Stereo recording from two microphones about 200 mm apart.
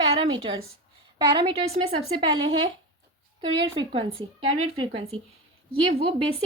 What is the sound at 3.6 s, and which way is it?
Speech, 25° right (ahead or behind).